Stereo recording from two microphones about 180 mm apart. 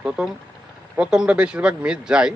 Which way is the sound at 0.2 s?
5° right (ahead or behind).